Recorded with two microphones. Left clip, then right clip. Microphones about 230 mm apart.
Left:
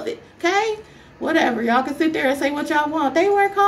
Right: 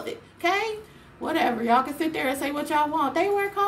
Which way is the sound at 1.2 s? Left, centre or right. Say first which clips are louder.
Left 5 dB; centre.